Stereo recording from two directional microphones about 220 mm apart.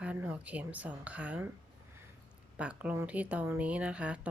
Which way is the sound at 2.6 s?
5° right (ahead or behind).